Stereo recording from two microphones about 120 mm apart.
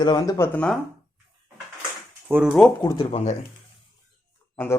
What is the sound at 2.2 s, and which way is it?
Speech, 10° right (ahead or behind).